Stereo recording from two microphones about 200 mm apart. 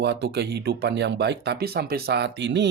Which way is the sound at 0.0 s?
55° right (ahead or behind).